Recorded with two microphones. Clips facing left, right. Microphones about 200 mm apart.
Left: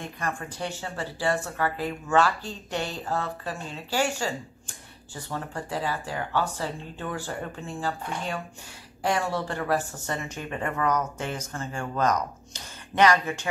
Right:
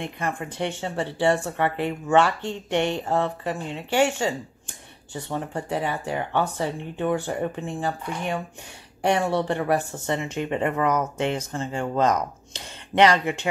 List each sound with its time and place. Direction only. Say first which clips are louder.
0.2 s speech: right 4 dB; 20° right (ahead or behind)
12.6 s a sound: right 3 dB; 25° right (ahead or behind)
13.2 s speech: right 5 dB; 20° right (ahead or behind)